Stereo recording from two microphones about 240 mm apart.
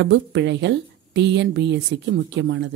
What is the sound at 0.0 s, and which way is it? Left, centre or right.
A woman's voice, right.